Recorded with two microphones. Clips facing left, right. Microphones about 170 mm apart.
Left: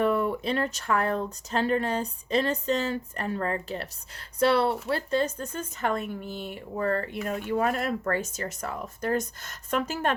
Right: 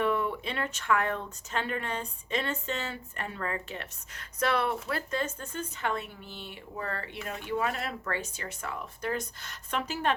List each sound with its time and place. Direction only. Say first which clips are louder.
0.0 s speech: left 4 dB; 40° left (ahead or behind)